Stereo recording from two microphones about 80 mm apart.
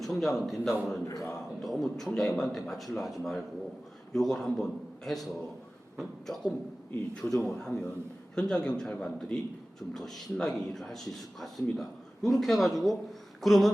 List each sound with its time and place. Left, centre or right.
0.0 s a man's voice: centre
1.0 s speech: left
1.6 s a man's voice: centre